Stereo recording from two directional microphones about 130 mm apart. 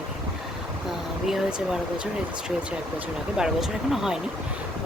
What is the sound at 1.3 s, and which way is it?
Speech, 5° right (ahead or behind).